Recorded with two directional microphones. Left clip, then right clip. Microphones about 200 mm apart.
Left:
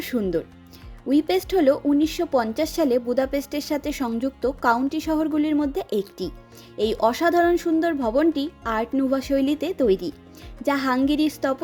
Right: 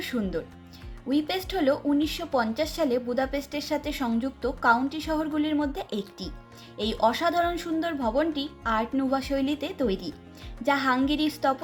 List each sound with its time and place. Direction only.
0.0 s a woman's voice: 45° left (ahead or behind)